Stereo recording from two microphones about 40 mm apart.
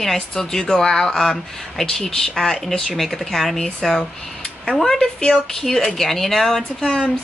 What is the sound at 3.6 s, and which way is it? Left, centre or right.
Speech, centre.